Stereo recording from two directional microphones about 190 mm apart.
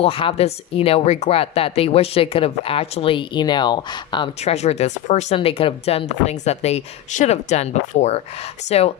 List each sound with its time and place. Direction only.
0.0 s speech: 30° left (ahead or behind)